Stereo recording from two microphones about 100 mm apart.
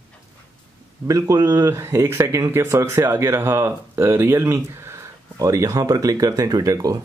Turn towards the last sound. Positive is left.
turn(degrees=-35)  # may be behind; listen again after turning